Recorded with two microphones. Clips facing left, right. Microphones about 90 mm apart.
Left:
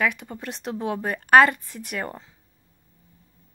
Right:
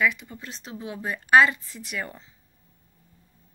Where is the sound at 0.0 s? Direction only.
55° left (ahead or behind).